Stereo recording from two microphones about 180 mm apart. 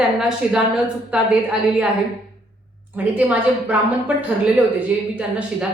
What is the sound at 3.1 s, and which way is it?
A woman's voice, 10° right (ahead or behind).